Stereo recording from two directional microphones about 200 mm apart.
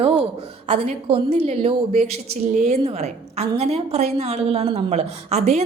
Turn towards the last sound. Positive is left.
turn(degrees=-30)  # may be behind; listen again after turning